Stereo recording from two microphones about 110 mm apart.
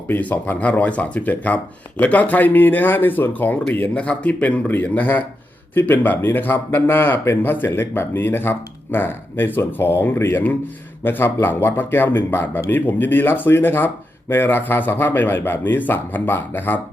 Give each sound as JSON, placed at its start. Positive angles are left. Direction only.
{"t": 0.1, "sound": "speech", "side_deg": 15}